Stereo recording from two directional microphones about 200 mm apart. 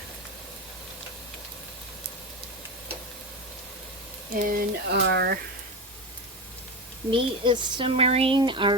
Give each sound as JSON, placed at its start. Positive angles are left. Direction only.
{"t": 4.4, "sound": "speech", "side_deg": -45}
{"t": 5.0, "sound": "speech", "side_deg": -55}
{"t": 7.1, "sound": "speech", "side_deg": -25}